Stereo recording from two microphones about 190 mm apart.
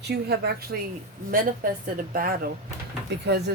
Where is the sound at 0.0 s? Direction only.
60° right (ahead or behind).